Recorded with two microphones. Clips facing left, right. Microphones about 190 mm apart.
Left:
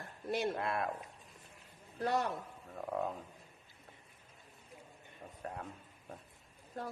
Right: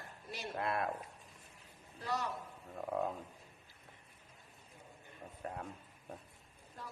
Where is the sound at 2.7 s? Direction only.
Centre (ahead or behind).